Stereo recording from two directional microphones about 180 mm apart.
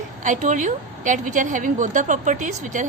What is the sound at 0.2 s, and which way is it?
A woman's voice, 45° right (ahead or behind).